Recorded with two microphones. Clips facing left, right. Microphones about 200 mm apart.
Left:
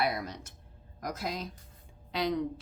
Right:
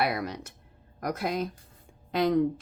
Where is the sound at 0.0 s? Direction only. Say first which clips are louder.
Right 3 dB; 65° right (ahead or behind).